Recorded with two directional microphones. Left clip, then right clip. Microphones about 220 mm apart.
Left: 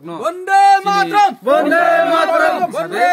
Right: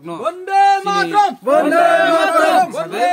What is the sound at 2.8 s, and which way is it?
Battle cry, 55° left (ahead or behind).